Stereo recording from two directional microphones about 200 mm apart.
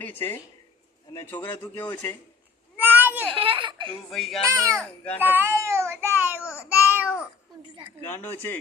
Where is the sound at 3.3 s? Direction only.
25° right (ahead or behind).